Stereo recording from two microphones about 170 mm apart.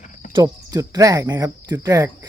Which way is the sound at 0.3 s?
20° right (ahead or behind).